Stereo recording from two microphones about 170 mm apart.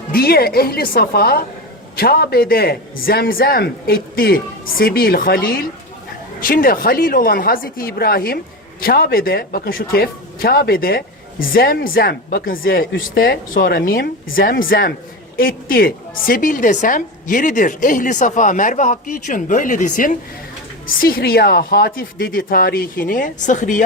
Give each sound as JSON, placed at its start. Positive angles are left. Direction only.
{"t": 0.1, "sound": "a woman's voice", "side_deg": 65}